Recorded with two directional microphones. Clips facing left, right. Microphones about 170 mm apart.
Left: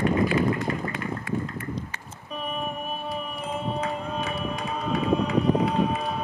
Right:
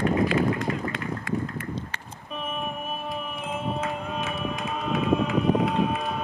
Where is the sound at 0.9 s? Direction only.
90° right.